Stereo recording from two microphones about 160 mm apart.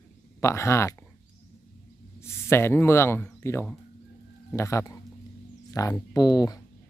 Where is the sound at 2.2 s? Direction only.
15° left (ahead or behind).